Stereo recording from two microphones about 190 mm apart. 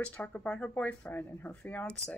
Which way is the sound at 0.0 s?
5° left (ahead or behind).